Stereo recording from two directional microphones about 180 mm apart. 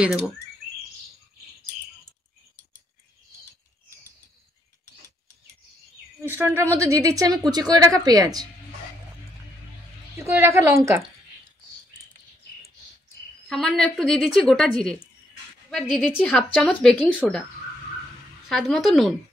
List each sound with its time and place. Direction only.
6.2 s a woman's voice: 10° right (ahead or behind)
10.1 s a woman's voice: 15° right (ahead or behind)
13.5 s a woman's voice: 5° left (ahead or behind)
18.5 s a woman's voice: centre (ahead or behind)